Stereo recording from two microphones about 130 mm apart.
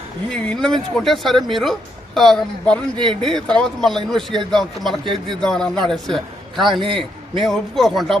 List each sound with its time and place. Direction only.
0.3 s a man's voice: 5° left (ahead or behind)